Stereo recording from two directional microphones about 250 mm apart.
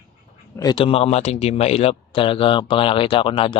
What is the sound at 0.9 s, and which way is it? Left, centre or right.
Speech, left.